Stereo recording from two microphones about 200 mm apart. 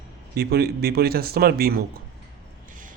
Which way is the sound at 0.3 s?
50° right (ahead or behind).